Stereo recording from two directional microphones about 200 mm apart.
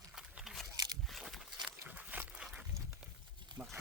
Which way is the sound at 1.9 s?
5° right (ahead or behind).